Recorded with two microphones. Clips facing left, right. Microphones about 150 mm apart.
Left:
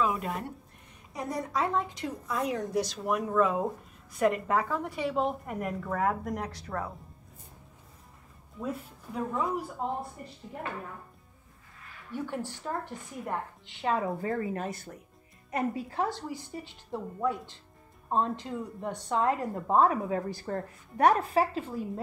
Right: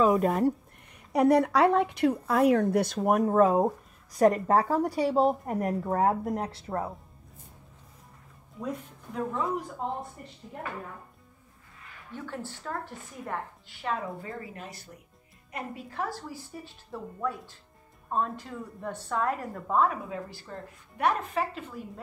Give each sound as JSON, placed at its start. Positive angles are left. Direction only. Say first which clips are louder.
{"t": 0.0, "sound": "speech", "louder": "right 8 dB", "side_deg": -40}
{"t": 1.1, "sound": "speech", "louder": "right 11 dB", "side_deg": -70}
{"t": 8.5, "sound": "speech", "louder": "even", "side_deg": 5}
{"t": 12.1, "sound": "a woman's voice", "louder": "left 3 dB", "side_deg": 15}
{"t": 14.2, "sound": "speech", "louder": "left 8 dB", "side_deg": 50}
{"t": 15.9, "sound": "speech", "louder": "left 3 dB", "side_deg": 25}
{"t": 19.7, "sound": "a woman's voice", "louder": "left 2 dB", "side_deg": 35}
{"t": 21.2, "sound": "a woman's voice", "louder": "left 4 dB", "side_deg": 35}